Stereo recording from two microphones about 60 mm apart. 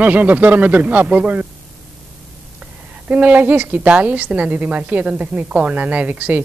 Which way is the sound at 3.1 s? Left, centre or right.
Right.